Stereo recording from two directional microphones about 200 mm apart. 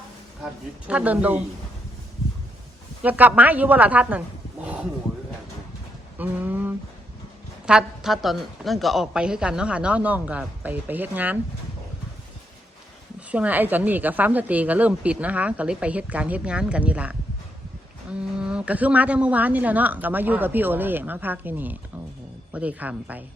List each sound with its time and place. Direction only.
0.9 s a woman's voice: 5° right (ahead or behind)
3.0 s a woman's voice: 10° right (ahead or behind)
4.6 s a sound: 5° right (ahead or behind)
6.1 s a woman's voice: 10° right (ahead or behind)
13.1 s a woman's voice: 5° right (ahead or behind)
18.3 s a woman's voice: 5° right (ahead or behind)